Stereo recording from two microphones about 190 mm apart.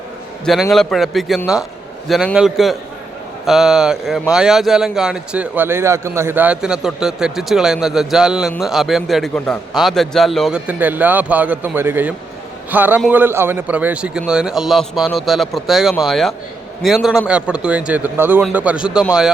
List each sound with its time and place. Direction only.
0.4 s a man's voice: centre (ahead or behind)